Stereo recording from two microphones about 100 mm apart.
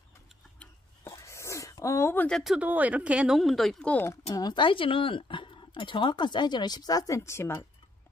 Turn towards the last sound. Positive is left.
turn(degrees=25)  # may be behind; listen again after turning